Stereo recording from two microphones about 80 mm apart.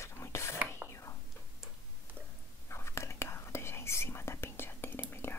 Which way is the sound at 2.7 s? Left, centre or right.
Left.